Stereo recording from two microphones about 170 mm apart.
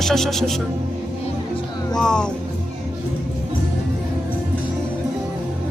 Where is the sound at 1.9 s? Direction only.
5° left (ahead or behind).